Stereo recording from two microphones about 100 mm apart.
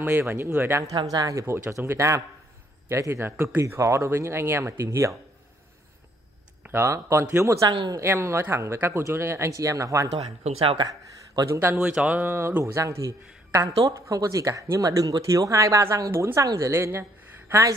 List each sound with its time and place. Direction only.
0.0 s speech: 20° right (ahead or behind)
1.1 s speech: 35° right (ahead or behind)
6.6 s speech: 25° right (ahead or behind)
7.6 s speech: 50° right (ahead or behind)
7.9 s speech: 25° right (ahead or behind)
10.1 s speech: 70° right (ahead or behind)
10.8 s speech: 40° right (ahead or behind)
11.4 s speech: 25° right (ahead or behind)